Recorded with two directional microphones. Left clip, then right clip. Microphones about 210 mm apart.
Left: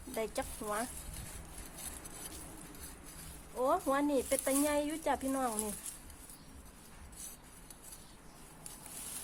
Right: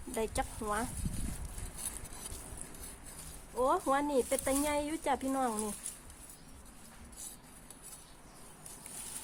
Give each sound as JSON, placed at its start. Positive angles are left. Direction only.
{"t": 0.1, "sound": "speech", "side_deg": -25}
{"t": 3.6, "sound": "speech", "side_deg": -25}